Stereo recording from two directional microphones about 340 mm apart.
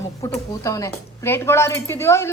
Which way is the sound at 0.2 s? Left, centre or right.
Centre.